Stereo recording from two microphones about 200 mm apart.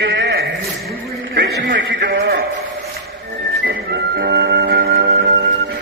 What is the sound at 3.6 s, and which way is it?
Music, 55° right (ahead or behind).